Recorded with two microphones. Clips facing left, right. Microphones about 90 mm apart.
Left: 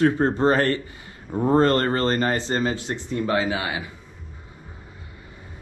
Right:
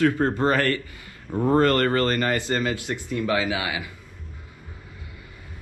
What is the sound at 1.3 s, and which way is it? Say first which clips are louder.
Speech: left 1 dB; 15° left (ahead or behind).